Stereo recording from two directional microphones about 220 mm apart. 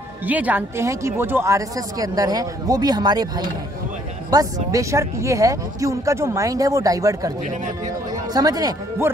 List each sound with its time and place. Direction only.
0.2 s speech: 5° right (ahead or behind)